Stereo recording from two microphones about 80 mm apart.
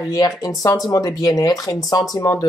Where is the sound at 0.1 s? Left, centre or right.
Left.